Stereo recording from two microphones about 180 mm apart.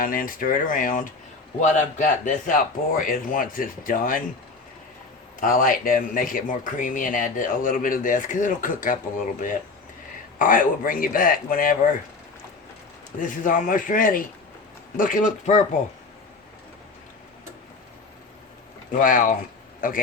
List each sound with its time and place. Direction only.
0.0 s speech: 50° left (ahead or behind)
5.4 s speech: 50° left (ahead or behind)
10.3 s speech: 50° left (ahead or behind)
13.1 s speech: 45° left (ahead or behind)
18.9 s speech: 50° left (ahead or behind)